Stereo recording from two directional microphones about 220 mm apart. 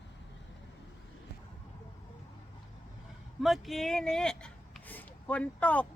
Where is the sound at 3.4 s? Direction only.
Centre (ahead or behind).